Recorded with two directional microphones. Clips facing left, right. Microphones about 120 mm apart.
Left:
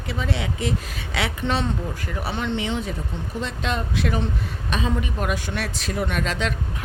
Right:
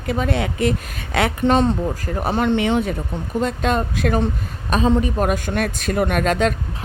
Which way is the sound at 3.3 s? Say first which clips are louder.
Right 8 dB; 50° right (ahead or behind).